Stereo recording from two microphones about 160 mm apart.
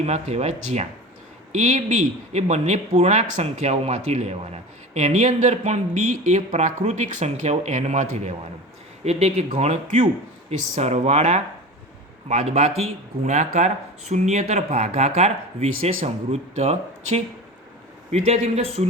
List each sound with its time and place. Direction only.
0.0 s speech: 40° right (ahead or behind)